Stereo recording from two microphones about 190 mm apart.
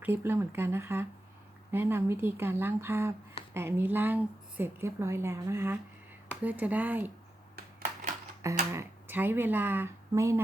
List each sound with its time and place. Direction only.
0.0 s a woman's voice: 10° right (ahead or behind)
8.7 s speech: 10° right (ahead or behind)